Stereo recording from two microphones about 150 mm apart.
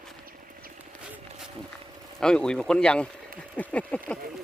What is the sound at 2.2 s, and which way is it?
Speech, 5° left (ahead or behind).